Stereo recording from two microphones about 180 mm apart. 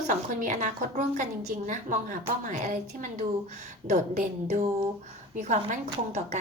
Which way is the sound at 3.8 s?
45° right (ahead or behind).